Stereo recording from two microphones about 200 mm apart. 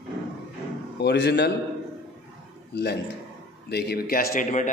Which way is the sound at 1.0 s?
55° left (ahead or behind).